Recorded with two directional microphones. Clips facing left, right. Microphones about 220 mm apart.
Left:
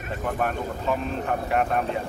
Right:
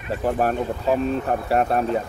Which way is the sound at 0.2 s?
40° right (ahead or behind).